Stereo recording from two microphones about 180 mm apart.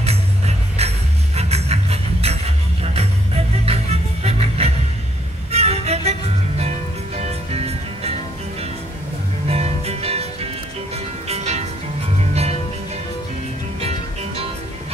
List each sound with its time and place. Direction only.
0.0 s music: 35° right (ahead or behind)
7.2 s music: 35° right (ahead or behind)
13.7 s music: 35° right (ahead or behind)